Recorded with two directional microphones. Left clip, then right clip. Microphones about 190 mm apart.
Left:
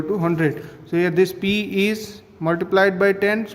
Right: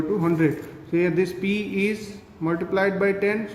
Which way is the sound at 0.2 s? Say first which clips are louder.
Left 1 dB; 50° left (ahead or behind).